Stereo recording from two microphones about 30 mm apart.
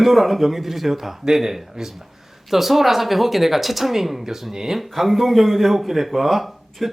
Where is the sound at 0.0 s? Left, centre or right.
Centre.